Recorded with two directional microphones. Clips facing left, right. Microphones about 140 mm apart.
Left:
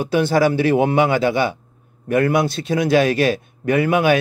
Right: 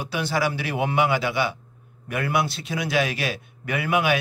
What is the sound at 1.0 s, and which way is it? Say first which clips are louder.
Speech: left 6 dB; 45° left (ahead or behind).